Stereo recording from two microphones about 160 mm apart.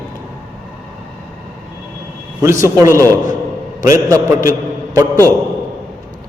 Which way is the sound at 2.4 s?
15° right (ahead or behind).